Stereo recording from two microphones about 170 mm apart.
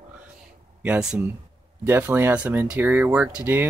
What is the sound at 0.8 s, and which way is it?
Speech, 5° right (ahead or behind).